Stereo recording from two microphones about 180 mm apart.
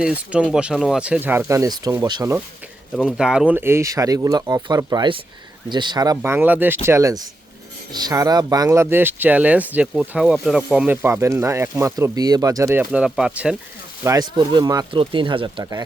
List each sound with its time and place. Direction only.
0.0 s speech: 5° right (ahead or behind); by 2.3 s 20° right (ahead or behind)
2.9 s speech: centre (ahead or behind)
14.0 s speech: 20° right (ahead or behind)